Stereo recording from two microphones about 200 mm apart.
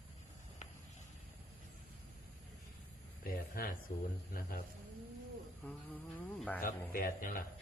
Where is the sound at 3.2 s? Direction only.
45° left (ahead or behind).